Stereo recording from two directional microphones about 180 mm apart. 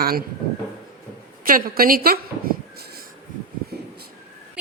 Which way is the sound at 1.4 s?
55° right (ahead or behind).